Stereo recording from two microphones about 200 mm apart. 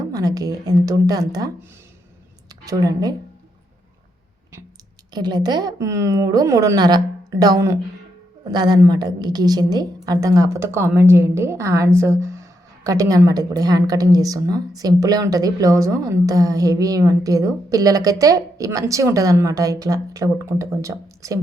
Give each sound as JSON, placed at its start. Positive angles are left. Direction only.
{"t": 0.1, "sound": "a woman's voice", "side_deg": -20}
{"t": 2.6, "sound": "a woman's voice", "side_deg": -20}
{"t": 5.1, "sound": "a woman's voice", "side_deg": -20}